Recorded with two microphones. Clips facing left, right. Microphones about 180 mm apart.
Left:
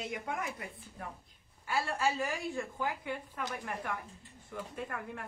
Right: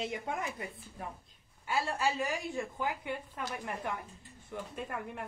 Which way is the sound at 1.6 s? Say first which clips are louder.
Even; 20° right (ahead or behind).